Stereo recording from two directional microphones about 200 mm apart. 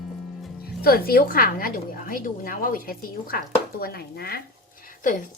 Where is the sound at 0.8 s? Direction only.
50° left (ahead or behind).